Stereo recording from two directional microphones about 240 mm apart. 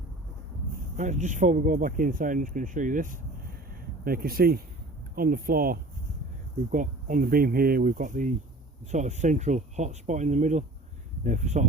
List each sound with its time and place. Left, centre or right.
0.9 s speech: right